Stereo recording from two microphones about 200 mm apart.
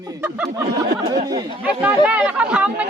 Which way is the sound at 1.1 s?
20° right (ahead or behind).